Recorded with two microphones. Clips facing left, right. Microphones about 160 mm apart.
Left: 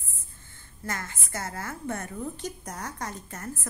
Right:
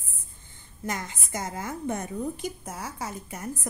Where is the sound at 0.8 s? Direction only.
15° right (ahead or behind).